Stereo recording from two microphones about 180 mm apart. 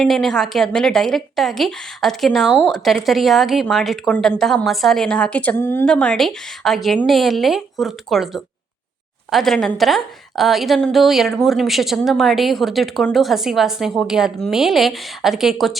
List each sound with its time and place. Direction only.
0.0 s a woman's voice: centre (ahead or behind)